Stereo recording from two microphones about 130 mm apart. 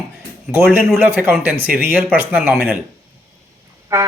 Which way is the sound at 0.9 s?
15° right (ahead or behind).